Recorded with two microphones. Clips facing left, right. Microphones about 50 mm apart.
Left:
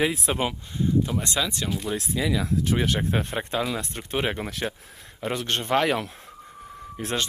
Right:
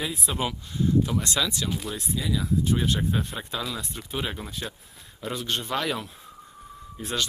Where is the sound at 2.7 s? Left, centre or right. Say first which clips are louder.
Left 2 dB; left.